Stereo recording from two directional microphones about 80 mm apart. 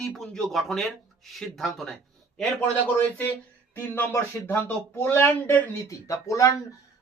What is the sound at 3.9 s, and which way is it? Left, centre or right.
Speech, left.